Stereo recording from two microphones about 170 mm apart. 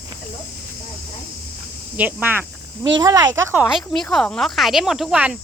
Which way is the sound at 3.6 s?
Centre (ahead or behind).